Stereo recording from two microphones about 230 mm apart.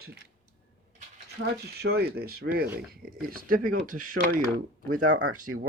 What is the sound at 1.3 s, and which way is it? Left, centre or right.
Speech, right.